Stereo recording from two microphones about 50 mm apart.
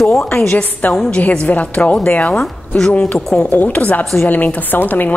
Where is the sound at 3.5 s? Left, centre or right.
Left.